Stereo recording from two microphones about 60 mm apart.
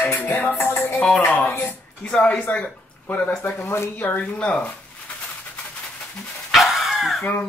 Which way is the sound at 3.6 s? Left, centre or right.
Left.